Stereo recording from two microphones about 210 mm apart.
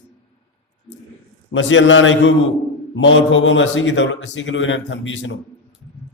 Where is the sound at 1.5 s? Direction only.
60° left (ahead or behind).